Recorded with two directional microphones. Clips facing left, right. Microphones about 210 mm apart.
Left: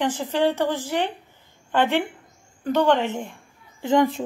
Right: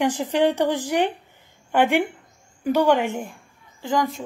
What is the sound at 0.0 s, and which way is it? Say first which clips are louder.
Speech: right 2 dB; 15° right (ahead or behind).